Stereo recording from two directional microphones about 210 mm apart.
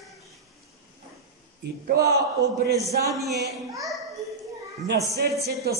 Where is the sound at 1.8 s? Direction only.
50° right (ahead or behind).